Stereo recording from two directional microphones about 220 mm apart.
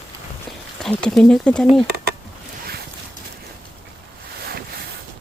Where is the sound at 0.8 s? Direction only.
5° left (ahead or behind).